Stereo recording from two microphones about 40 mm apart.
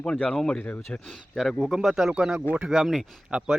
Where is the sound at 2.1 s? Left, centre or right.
Centre.